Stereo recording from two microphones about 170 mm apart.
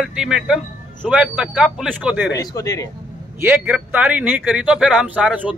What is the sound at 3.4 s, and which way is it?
Speech, 10° right (ahead or behind).